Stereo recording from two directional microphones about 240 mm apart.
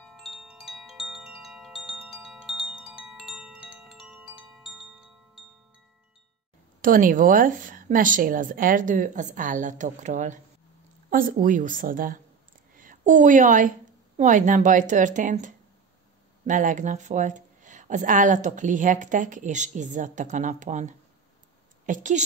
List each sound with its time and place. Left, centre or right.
0.0 s wind chime: centre
6.8 s a woman's voice: right
12.7 s a sound: right
14.1 s a woman's voice: right